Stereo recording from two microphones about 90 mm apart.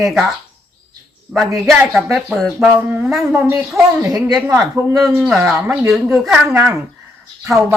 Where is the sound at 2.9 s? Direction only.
15° right (ahead or behind).